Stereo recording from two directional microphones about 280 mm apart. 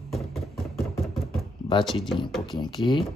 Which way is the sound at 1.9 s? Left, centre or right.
Centre.